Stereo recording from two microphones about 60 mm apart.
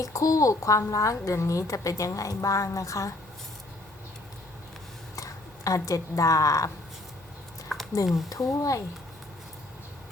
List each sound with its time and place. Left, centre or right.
0.0 s a woman's voice: left
5.1 s speech: left
7.7 s a sound: centre
8.1 s a woman's voice: left